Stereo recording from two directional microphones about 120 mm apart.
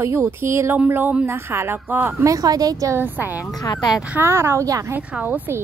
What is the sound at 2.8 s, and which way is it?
A woman's voice, 20° right (ahead or behind).